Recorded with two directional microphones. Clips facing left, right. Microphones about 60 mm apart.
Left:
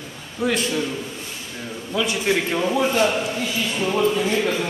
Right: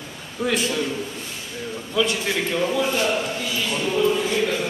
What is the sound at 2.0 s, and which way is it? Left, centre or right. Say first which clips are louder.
Speech: left 1 dB; centre.